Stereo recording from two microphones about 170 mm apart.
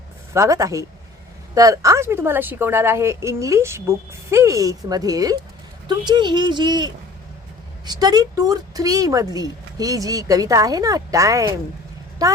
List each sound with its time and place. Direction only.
0.3 s a woman's voice: 20° right (ahead or behind)